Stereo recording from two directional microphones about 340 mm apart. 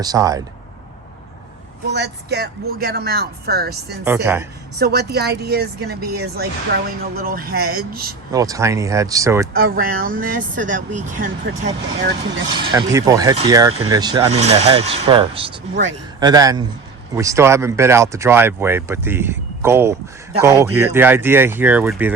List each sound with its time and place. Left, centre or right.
0.0 s speech: centre
1.9 s speech: right
4.0 s speech: centre
4.8 s speech: right
8.3 s speech: centre
9.5 s speech: right
12.5 s speech: centre
13.7 s speech: right
13.9 s speech: centre